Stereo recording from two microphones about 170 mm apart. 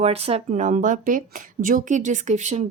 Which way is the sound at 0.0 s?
35° right (ahead or behind).